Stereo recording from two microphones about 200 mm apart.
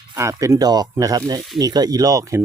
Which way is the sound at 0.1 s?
15° right (ahead or behind).